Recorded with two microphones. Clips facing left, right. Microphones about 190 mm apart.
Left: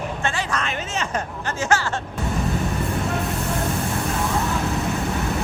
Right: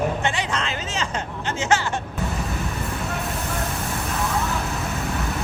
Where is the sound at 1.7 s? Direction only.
20° right (ahead or behind).